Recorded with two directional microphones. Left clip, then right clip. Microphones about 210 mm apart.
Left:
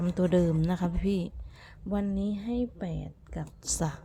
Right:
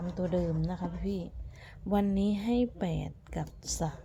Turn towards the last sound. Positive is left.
turn(degrees=20)  # may be behind; listen again after turning